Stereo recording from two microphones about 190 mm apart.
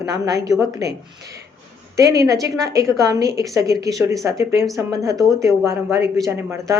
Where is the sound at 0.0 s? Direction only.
15° right (ahead or behind).